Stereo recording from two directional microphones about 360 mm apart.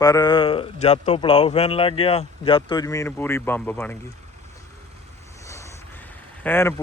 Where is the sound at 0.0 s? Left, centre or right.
Centre.